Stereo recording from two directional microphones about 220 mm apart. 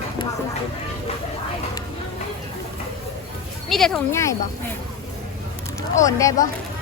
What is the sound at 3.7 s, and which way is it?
Speech, centre (ahead or behind).